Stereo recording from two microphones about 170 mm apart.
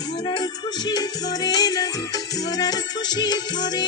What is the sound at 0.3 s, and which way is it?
Music, 25° left (ahead or behind).